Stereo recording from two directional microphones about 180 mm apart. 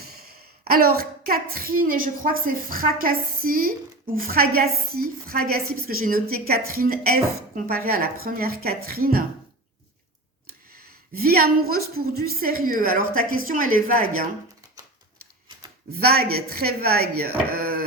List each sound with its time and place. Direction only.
0.0 s speech: 60° right (ahead or behind)
11.1 s a woman's voice: 55° right (ahead or behind)
16.0 s speech: 60° right (ahead or behind)